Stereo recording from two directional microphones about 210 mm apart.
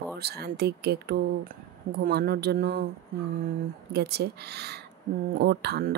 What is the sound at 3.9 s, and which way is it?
Speech, 50° right (ahead or behind).